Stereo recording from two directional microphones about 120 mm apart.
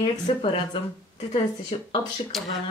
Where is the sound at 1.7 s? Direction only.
50° left (ahead or behind).